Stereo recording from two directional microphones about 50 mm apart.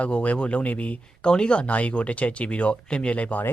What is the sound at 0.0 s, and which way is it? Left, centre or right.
Speech, left.